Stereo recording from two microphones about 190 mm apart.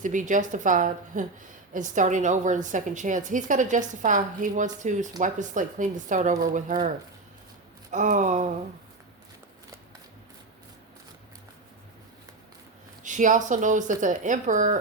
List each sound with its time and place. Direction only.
0.0 s a woman's voice: 40° right (ahead or behind)
13.0 s a woman's voice: 40° right (ahead or behind)